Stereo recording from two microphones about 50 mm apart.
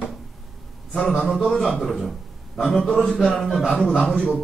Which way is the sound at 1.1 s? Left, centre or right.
Centre.